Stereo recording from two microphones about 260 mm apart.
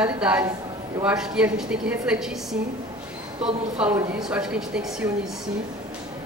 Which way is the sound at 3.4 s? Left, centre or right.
Centre.